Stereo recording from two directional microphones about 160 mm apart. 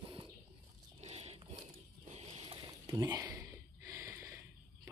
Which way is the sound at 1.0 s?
40° right (ahead or behind).